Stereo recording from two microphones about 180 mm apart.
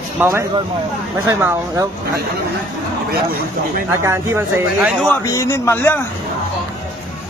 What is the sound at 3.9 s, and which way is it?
Speech, 15° right (ahead or behind).